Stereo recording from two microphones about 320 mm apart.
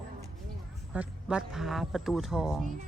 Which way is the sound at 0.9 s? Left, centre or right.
Centre.